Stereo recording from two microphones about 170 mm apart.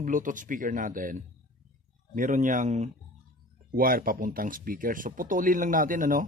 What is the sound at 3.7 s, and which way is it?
Speech, 55° right (ahead or behind).